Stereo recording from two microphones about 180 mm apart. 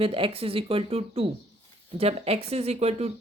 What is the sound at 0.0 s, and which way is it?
Speech, 30° right (ahead or behind).